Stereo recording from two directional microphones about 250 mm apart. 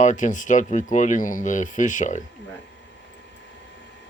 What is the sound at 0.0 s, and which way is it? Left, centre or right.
Speech, left.